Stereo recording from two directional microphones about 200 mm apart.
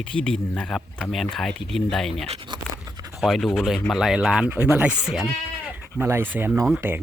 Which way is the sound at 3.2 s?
Centre (ahead or behind).